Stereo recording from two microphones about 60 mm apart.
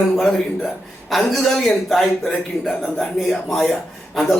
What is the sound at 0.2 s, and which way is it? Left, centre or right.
A man's voice, centre.